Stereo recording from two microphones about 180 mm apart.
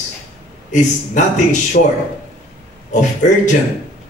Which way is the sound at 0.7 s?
40° left (ahead or behind).